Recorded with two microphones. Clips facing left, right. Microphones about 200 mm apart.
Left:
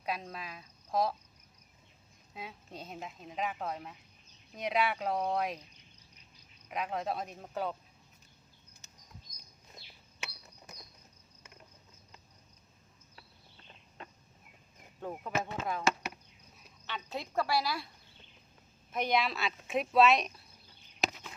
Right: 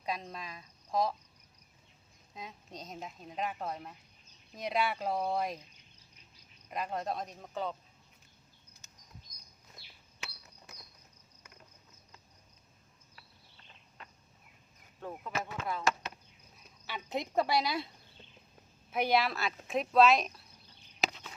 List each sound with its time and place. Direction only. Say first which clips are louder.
0.0 s speech: even; 5° left (ahead or behind)
2.3 s a woman's voice: left 1 dB; 5° left (ahead or behind)
6.7 s a woman's voice: left 1 dB; centre (ahead or behind)
15.0 s speech: left 3 dB; 15° left (ahead or behind)
16.8 s speech: right 3 dB; 15° right (ahead or behind)
18.9 s a woman's voice: right 2 dB; 10° right (ahead or behind)